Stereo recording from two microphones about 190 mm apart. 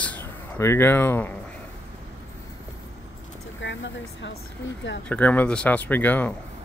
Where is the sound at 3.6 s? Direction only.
75° left (ahead or behind).